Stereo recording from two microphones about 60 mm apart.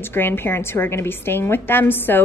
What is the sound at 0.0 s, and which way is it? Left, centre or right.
A woman's voice, left.